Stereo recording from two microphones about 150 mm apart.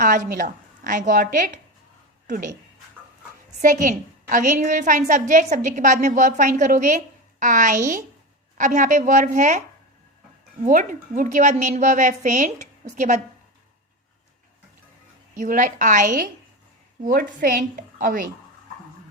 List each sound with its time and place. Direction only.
0.0 s a woman's voice: 55° right (ahead or behind)
3.6 s a woman's voice: 60° right (ahead or behind)
11.5 s a woman's voice: 50° right (ahead or behind)
15.4 s a woman's voice: 60° right (ahead or behind)